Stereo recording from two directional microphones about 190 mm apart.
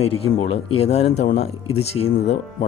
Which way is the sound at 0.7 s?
30° left (ahead or behind).